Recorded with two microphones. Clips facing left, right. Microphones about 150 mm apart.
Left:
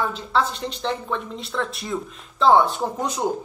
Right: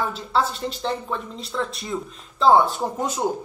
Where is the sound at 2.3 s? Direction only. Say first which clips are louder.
Even; centre (ahead or behind).